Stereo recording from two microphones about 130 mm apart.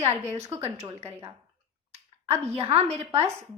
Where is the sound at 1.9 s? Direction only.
55° right (ahead or behind).